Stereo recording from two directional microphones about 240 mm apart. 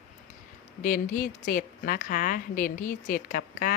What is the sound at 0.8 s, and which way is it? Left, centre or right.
A woman's voice, left.